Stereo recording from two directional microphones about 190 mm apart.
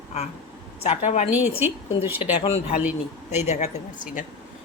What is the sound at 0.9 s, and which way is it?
Speech, 35° left (ahead or behind).